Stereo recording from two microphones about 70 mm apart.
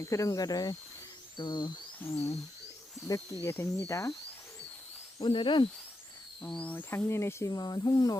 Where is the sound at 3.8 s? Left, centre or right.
Left.